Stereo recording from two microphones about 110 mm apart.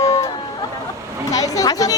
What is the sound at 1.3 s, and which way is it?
Speech, 35° left (ahead or behind).